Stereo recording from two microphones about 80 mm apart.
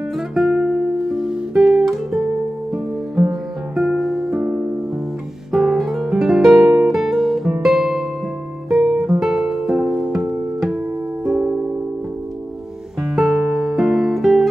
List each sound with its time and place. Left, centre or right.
0.3 s music: centre
5.5 s music: centre
8.6 s guitar: centre
9.2 s music: centre
11.2 s music: centre
13.0 s music: centre